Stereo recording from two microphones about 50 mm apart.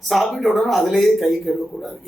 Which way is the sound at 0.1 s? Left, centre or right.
Centre.